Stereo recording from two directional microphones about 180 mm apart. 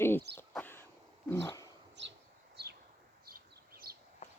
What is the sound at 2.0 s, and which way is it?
Bird, 75° right (ahead or behind).